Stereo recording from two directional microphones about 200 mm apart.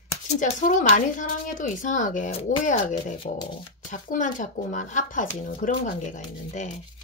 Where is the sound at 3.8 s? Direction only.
40° left (ahead or behind).